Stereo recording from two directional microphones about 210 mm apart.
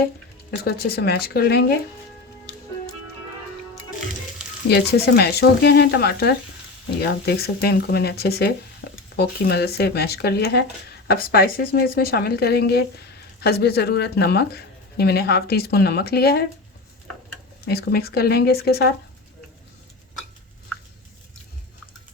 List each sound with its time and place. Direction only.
0.6 s a woman's voice: 45° left (ahead or behind)
4.7 s a woman's voice: 50° left (ahead or behind)
17.7 s a woman's voice: 50° left (ahead or behind)